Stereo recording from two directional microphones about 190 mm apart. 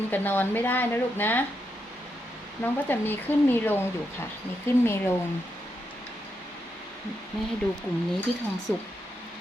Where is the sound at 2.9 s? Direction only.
10° left (ahead or behind).